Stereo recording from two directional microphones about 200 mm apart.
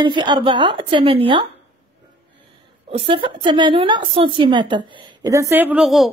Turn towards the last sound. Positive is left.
turn(degrees=0)  # may be behind; listen again after turning